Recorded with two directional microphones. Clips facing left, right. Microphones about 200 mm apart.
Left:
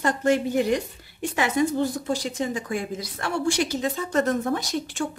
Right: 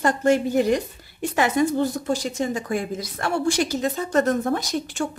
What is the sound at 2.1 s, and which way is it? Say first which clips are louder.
A woman's voice: right 2 dB; 45° right (ahead or behind).